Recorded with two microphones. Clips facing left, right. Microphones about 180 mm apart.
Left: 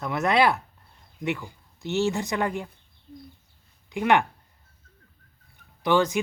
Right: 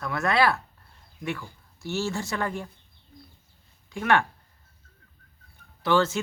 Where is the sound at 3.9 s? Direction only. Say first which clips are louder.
Left 2 dB; 15° left (ahead or behind).